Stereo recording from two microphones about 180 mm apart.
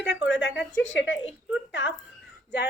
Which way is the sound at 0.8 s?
90° left.